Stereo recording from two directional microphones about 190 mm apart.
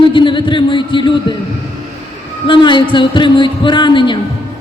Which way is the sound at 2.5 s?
25° left (ahead or behind).